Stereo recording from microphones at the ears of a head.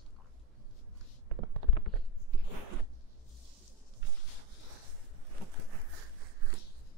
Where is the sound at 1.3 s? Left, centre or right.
Right.